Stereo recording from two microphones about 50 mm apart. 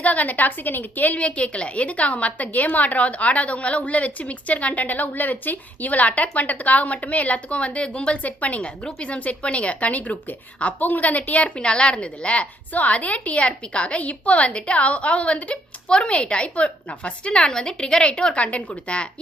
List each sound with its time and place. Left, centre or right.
0.0 s a woman's voice: left
1.2 s a woman's voice: left